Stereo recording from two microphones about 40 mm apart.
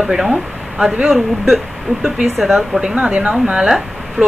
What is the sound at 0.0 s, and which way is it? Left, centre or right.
Speech, centre.